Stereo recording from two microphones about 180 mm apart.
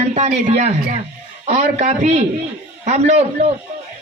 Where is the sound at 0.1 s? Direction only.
40° right (ahead or behind).